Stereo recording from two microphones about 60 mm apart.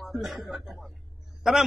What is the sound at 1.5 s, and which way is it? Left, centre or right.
Speech, centre.